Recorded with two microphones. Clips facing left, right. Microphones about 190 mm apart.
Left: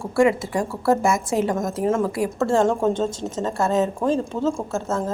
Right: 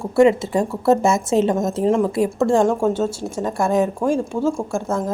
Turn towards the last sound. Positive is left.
turn(degrees=-15)  # may be behind; listen again after turning